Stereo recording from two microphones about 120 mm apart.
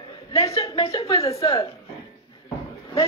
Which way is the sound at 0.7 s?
50° left (ahead or behind).